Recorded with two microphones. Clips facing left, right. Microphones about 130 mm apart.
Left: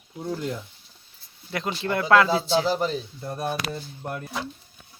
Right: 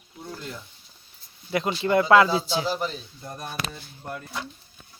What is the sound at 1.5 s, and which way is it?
Speech, 5° right (ahead or behind).